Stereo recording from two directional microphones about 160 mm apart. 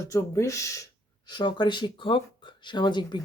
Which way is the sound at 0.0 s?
15° left (ahead or behind).